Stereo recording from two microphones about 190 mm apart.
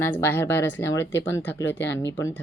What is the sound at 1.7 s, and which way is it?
Speech, 70° left (ahead or behind).